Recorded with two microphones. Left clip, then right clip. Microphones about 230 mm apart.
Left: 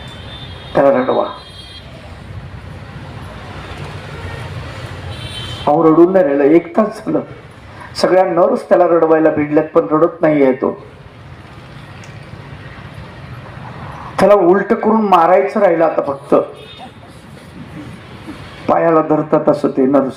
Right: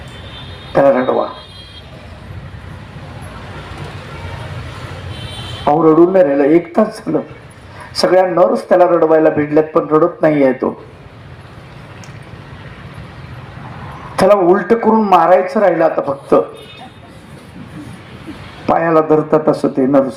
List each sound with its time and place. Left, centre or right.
0.7 s a man's voice: right
5.6 s a man's voice: right
14.2 s a man's voice: right
18.6 s a man's voice: right